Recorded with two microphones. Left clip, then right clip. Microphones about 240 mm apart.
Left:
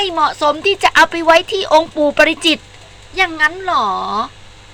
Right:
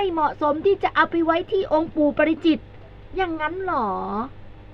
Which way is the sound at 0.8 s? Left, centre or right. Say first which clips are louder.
Left 9 dB; centre.